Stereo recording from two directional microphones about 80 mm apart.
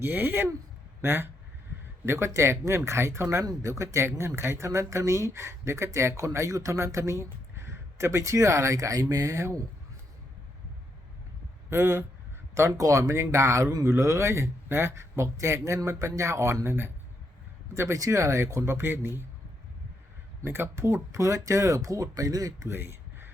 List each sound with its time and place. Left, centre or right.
0.0 s speech: right
11.7 s speech: right
12.5 s speech: right
17.7 s speech: right
20.4 s speech: right
22.7 s a sound: right